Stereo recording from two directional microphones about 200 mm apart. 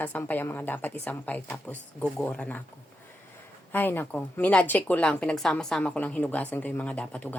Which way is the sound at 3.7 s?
10° left (ahead or behind).